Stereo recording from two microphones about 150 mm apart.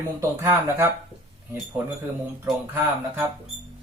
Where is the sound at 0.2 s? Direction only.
20° right (ahead or behind).